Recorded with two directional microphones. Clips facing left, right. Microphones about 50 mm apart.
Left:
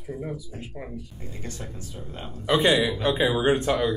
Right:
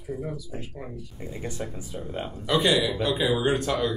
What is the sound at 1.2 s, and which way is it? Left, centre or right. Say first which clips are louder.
Speech: right 8 dB; centre.